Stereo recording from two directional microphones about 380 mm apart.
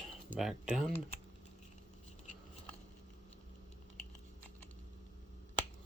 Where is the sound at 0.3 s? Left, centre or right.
Centre.